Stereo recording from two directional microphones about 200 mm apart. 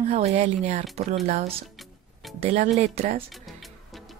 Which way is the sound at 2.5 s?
40° right (ahead or behind).